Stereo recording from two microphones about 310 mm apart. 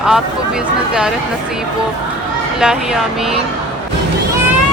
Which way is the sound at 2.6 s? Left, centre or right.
Centre.